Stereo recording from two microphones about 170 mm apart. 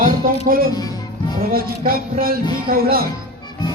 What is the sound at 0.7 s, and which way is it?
Music, 20° left (ahead or behind).